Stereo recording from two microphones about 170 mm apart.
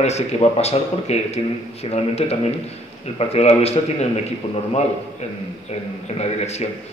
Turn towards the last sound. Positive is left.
turn(degrees=40)  # may be behind; listen again after turning